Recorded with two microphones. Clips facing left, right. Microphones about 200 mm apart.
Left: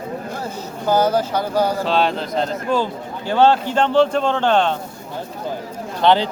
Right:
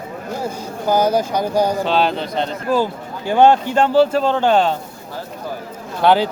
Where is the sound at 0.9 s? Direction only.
10° right (ahead or behind).